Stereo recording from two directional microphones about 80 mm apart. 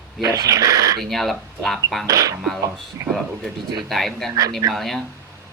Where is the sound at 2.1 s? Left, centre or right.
Right.